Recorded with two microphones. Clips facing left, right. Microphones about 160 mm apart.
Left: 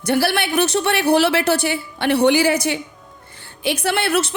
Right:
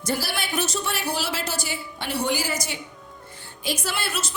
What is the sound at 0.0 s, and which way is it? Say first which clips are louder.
Speech: left 9 dB; 65° left (ahead or behind).